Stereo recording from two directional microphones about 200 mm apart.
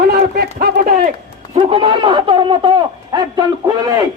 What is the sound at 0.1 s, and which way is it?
Run, 50° right (ahead or behind).